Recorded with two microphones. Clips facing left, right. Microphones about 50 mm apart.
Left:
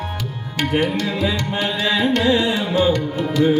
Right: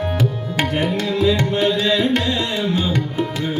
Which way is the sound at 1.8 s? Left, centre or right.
Centre.